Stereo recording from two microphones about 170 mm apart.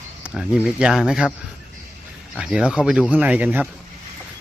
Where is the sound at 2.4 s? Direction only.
5° right (ahead or behind).